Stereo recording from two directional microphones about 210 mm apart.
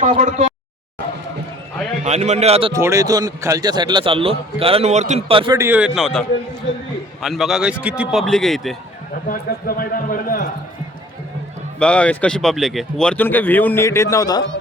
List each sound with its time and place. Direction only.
0.1 s a man's voice: 35° right (ahead or behind)
2.0 s a man's voice: 35° right (ahead or behind)
2.7 s a man's voice: 15° right (ahead or behind)
5.5 s a man's voice: 10° right (ahead or behind)
9.3 s a man's voice: 45° left (ahead or behind)
11.8 s speech: 5° left (ahead or behind)